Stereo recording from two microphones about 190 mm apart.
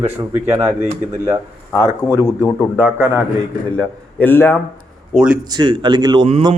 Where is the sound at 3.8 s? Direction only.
10° left (ahead or behind).